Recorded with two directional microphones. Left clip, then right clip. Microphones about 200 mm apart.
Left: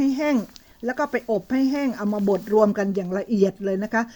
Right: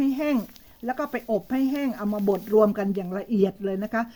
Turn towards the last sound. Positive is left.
turn(degrees=30)  # may be behind; listen again after turning